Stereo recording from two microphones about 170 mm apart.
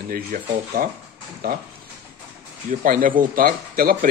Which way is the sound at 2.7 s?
55° right (ahead or behind).